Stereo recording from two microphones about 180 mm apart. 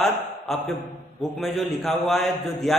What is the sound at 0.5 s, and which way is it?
A man's voice, centre (ahead or behind).